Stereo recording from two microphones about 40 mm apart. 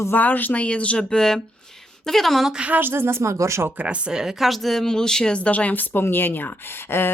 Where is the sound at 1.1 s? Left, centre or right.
Centre.